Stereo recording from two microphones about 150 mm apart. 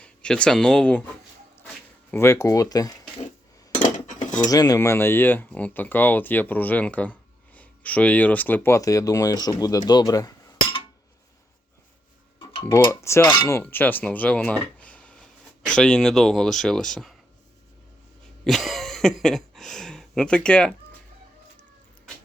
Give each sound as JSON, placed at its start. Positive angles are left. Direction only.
{"t": 0.0, "sound": "speech", "side_deg": 5}
{"t": 2.1, "sound": "speech", "side_deg": 15}
{"t": 3.7, "sound": "cutlery", "side_deg": 60}
{"t": 4.4, "sound": "speech", "side_deg": 25}
{"t": 12.9, "sound": "cutlery", "side_deg": 20}
{"t": 18.4, "sound": "a sound", "side_deg": 0}